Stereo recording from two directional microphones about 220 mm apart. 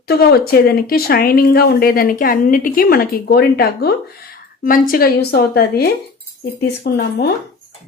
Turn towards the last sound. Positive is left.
turn(degrees=45)  # may be behind; listen again after turning